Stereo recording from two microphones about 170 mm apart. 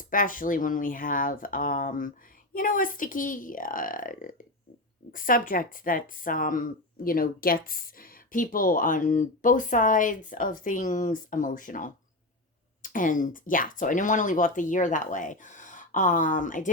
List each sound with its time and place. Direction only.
0.0 s speech: 55° left (ahead or behind)